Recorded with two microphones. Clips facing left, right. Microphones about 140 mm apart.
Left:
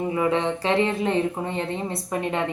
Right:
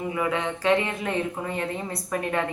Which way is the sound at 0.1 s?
30° left (ahead or behind).